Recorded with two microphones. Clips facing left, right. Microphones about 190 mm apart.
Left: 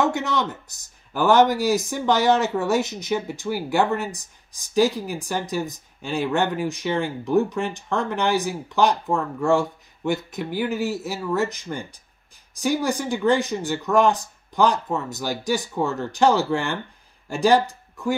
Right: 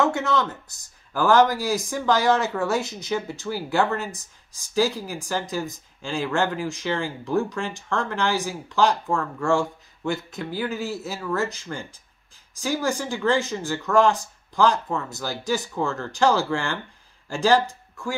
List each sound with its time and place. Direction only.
0.0 s speech: 20° left (ahead or behind)